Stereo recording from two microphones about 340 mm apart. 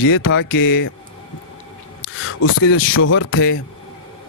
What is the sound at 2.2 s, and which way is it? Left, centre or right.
Speech, left.